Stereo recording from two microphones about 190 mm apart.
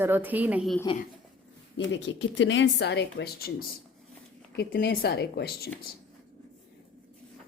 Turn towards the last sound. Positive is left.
turn(degrees=55)  # may be behind; listen again after turning